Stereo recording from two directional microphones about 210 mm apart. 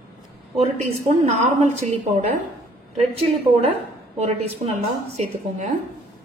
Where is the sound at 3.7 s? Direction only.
30° right (ahead or behind).